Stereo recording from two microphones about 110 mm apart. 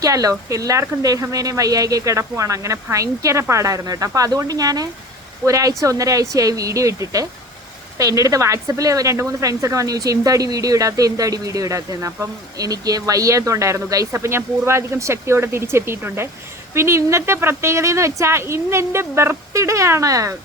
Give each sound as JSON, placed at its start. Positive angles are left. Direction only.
{"t": 0.0, "sound": "speech", "side_deg": -30}